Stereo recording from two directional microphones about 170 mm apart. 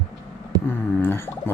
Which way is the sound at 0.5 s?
25° right (ahead or behind).